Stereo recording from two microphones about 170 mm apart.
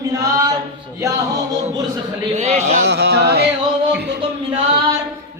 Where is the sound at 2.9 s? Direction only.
80° right.